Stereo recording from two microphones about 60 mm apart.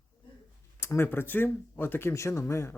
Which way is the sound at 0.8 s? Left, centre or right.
Left.